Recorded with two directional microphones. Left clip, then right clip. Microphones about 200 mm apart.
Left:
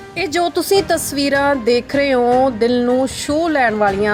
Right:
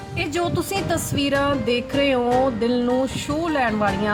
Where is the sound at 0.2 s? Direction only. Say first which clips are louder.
Left 6 dB; 30° left (ahead or behind).